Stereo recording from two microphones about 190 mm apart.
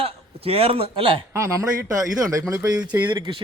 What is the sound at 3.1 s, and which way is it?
Speech, 25° right (ahead or behind).